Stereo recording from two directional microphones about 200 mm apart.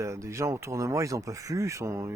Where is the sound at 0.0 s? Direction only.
15° right (ahead or behind).